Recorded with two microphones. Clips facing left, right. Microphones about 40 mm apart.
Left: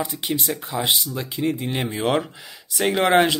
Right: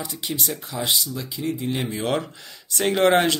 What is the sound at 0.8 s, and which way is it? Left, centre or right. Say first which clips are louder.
Speech: even; left.